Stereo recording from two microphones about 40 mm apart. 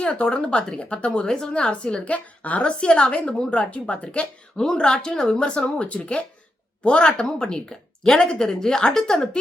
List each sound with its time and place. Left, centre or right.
0.0 s a woman's voice: left